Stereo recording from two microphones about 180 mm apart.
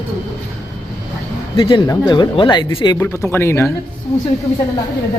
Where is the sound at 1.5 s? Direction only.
25° left (ahead or behind).